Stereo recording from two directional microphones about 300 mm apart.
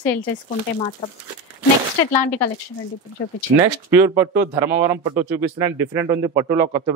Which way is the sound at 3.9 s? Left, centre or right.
Centre.